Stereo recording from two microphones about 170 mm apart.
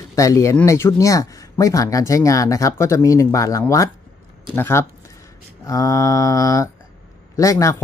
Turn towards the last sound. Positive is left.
turn(degrees=20)  # may be behind; listen again after turning